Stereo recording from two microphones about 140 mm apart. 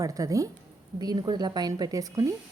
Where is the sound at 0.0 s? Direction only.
25° right (ahead or behind).